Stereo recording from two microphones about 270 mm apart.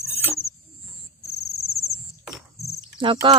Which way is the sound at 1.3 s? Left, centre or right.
Left.